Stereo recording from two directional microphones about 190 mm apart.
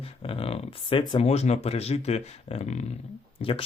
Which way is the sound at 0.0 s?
30° left (ahead or behind).